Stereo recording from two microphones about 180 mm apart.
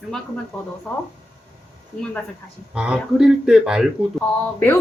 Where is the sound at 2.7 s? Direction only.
5° right (ahead or behind).